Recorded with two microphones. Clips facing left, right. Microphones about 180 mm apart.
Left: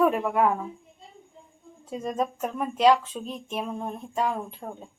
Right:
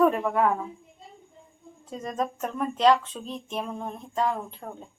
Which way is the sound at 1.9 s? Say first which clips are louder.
Left 2 dB; 10° left (ahead or behind).